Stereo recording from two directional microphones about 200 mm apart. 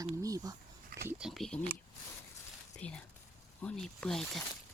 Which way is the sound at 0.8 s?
50° right (ahead or behind).